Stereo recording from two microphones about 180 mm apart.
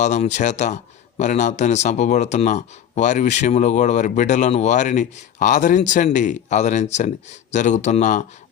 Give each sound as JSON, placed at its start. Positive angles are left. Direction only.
{"t": 0.0, "sound": "speech", "side_deg": 40}